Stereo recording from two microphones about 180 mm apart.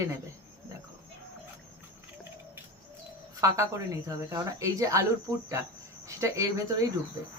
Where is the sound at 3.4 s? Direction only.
20° right (ahead or behind).